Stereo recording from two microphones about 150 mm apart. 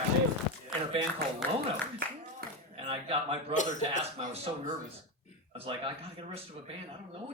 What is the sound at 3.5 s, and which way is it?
Speech, 55° left (ahead or behind).